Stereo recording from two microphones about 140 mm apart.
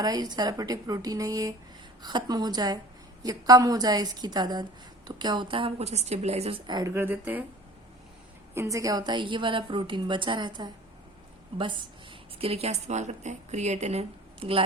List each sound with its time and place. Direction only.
0.0 s a woman's voice: 25° right (ahead or behind); by 6.6 s 50° right (ahead or behind)
6.7 s speech: 25° right (ahead or behind)
8.5 s a woman's voice: 20° right (ahead or behind)
12.4 s a woman's voice: 45° right (ahead or behind)